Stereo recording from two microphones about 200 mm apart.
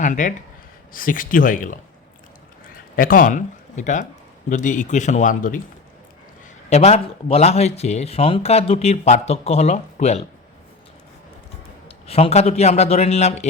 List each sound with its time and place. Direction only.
0.0 s speech: 40° left (ahead or behind)
6.7 s speech: 35° left (ahead or behind)
12.0 s speech: 30° left (ahead or behind)